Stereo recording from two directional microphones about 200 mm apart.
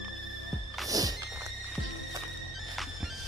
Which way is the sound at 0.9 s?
20° right (ahead or behind).